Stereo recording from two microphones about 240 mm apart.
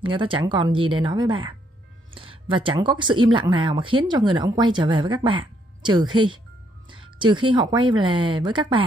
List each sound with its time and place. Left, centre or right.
0.0 s speech: right